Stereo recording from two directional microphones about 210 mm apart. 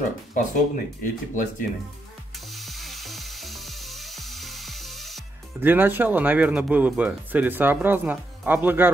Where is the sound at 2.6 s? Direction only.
Centre (ahead or behind).